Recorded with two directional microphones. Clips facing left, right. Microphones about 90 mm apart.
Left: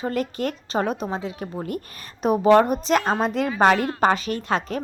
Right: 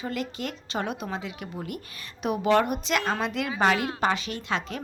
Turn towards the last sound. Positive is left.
turn(degrees=40)  # may be behind; listen again after turning